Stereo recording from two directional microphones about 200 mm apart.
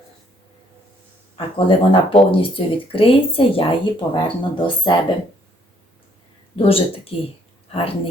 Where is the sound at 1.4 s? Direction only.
25° left (ahead or behind).